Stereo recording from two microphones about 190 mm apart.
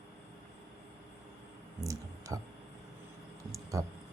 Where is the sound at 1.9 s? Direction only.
15° right (ahead or behind).